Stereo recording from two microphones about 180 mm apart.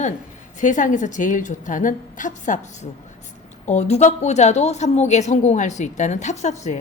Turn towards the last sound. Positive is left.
turn(degrees=40)  # may be behind; listen again after turning